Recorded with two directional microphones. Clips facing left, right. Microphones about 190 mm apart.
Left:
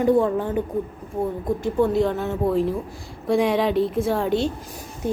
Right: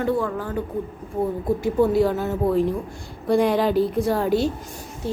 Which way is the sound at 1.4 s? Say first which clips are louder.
Right 1 dB; 5° right (ahead or behind).